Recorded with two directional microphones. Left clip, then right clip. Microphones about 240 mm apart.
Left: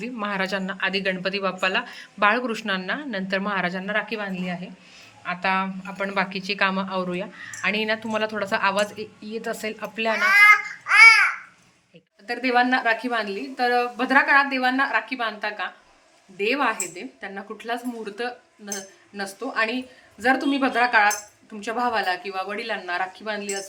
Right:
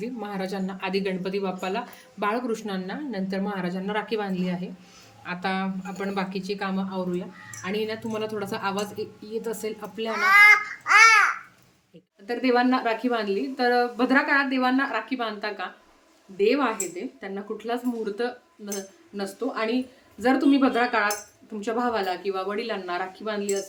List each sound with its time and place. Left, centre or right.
0.0 s a woman's voice: centre
10.2 s babbling: right
12.3 s a woman's voice: centre